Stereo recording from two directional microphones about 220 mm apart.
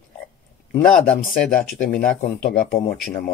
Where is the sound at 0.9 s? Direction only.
5° left (ahead or behind).